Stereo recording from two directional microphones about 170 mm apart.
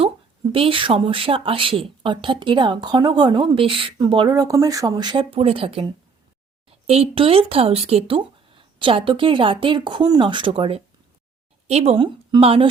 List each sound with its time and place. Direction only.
0.5 s a woman's voice: 30° right (ahead or behind)